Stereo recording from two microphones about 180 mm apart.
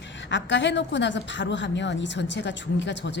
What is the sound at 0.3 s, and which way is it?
A woman's voice, 85° left.